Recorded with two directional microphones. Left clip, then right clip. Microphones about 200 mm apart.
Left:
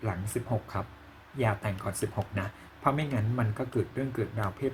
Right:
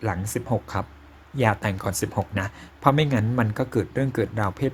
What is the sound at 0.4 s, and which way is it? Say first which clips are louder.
Speech: right 4 dB; 40° right (ahead or behind).